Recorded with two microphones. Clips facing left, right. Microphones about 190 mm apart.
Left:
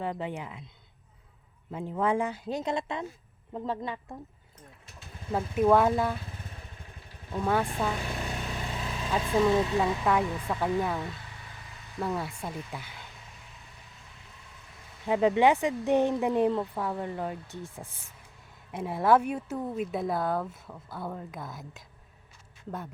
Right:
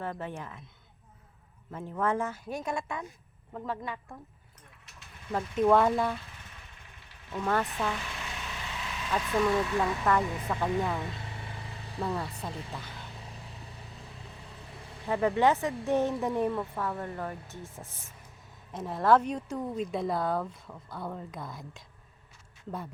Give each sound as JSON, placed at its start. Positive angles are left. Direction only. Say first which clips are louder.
{"t": 0.0, "sound": "speech", "louder": "left 3 dB", "side_deg": 15}
{"t": 1.7, "sound": "a woman's voice", "louder": "left 2 dB", "side_deg": 15}
{"t": 5.3, "sound": "speech", "louder": "left 1 dB", "side_deg": 10}
{"t": 7.4, "sound": "speech", "louder": "left 2 dB", "side_deg": 10}
{"t": 8.0, "sound": "vehicle", "louder": "left 6 dB", "side_deg": 40}
{"t": 9.2, "sound": "a woman's voice", "louder": "left 3 dB", "side_deg": 25}
{"t": 10.0, "sound": "speech", "louder": "left 1 dB", "side_deg": 10}
{"t": 11.9, "sound": "speech", "louder": "left 1 dB", "side_deg": 5}
{"t": 15.0, "sound": "speech", "louder": "left 3 dB", "side_deg": 15}